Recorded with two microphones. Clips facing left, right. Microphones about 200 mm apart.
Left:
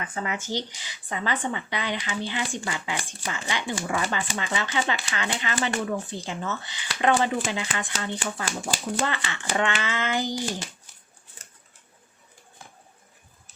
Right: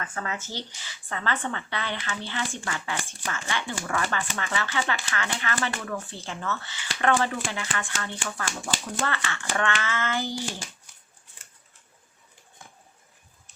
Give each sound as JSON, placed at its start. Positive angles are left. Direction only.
{"t": 0.0, "sound": "speech", "side_deg": 15}